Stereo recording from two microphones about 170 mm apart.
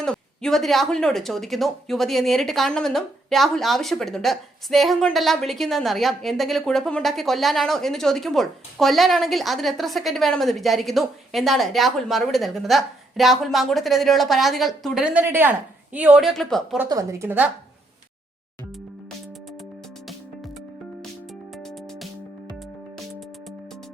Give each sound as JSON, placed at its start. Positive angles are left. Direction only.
{"t": 0.0, "sound": "speech", "side_deg": 5}
{"t": 16.7, "sound": "a woman's voice", "side_deg": -15}
{"t": 21.5, "sound": "music", "side_deg": 0}